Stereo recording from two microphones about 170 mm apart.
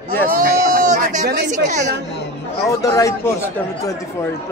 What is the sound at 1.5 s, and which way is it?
Speech, 45° right (ahead or behind).